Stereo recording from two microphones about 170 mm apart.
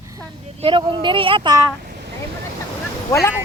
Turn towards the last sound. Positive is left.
turn(degrees=15)  # may be behind; listen again after turning